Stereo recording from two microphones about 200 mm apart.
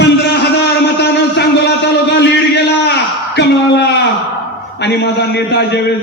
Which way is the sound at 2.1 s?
60° left (ahead or behind).